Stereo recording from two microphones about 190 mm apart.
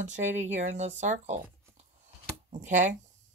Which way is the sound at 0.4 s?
40° right (ahead or behind).